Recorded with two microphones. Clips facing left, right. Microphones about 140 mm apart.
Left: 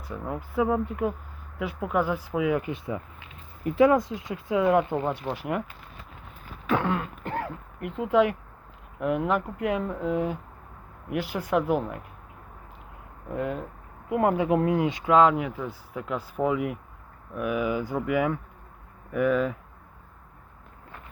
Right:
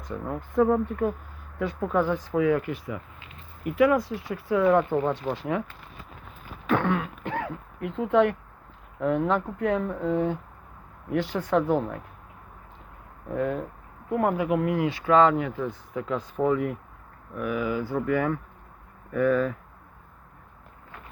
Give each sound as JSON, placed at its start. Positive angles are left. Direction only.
{"t": 0.0, "sound": "speech", "side_deg": 10}
{"t": 6.7, "sound": "throat clearing", "side_deg": 10}
{"t": 7.9, "sound": "speech", "side_deg": 10}
{"t": 13.3, "sound": "speech", "side_deg": 15}